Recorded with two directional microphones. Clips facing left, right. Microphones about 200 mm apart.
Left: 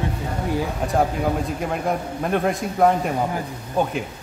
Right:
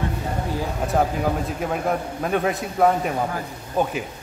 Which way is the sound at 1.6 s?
Centre (ahead or behind).